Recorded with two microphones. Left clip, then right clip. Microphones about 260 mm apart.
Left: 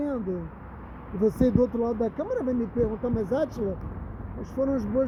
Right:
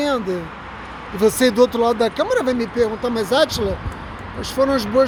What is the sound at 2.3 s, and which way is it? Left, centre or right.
Speech, centre.